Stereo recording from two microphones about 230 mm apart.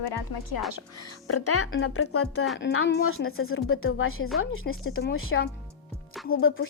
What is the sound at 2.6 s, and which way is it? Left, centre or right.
A woman's voice, left.